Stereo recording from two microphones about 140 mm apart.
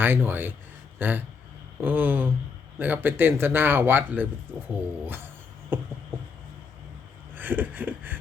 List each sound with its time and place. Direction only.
0.0 s speech: 15° right (ahead or behind)
5.7 s a sound: 15° right (ahead or behind)
7.3 s speech: 15° right (ahead or behind)